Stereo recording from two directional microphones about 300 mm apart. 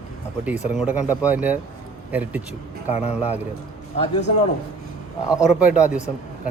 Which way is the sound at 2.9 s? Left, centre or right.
Left.